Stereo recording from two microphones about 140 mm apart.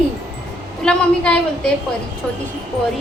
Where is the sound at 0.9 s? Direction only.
5° left (ahead or behind).